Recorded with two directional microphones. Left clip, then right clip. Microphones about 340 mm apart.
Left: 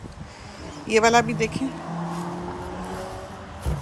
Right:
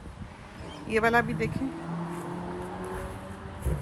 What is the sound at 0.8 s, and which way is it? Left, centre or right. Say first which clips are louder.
Speech: left 6 dB; centre.